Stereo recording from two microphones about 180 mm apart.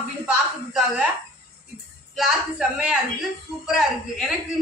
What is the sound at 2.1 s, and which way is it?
Speech, centre (ahead or behind).